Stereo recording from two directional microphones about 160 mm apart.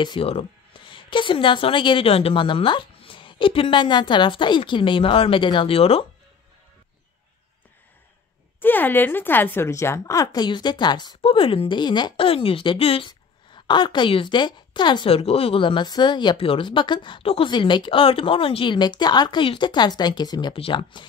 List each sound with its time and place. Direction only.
0.0 s a woman's voice: 35° left (ahead or behind)
8.5 s speech: 10° left (ahead or behind); by 21.0 s 35° left (ahead or behind)